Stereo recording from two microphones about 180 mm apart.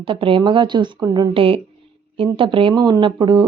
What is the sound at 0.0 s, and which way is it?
Speech, 30° right (ahead or behind).